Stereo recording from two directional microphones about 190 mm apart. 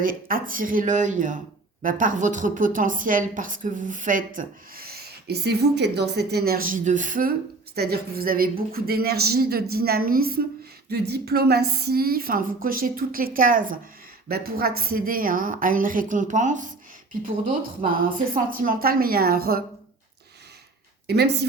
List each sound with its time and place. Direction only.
0.0 s speech: 50° right (ahead or behind)
21.1 s speech: 60° right (ahead or behind)